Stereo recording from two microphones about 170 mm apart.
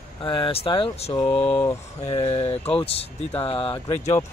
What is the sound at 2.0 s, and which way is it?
Speech, 35° left (ahead or behind).